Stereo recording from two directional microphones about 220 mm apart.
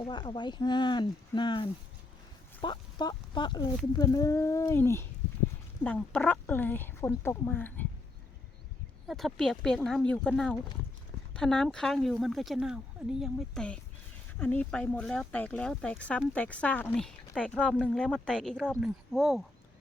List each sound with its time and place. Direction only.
0.1 s speech: 20° left (ahead or behind)
9.0 s speech: centre (ahead or behind)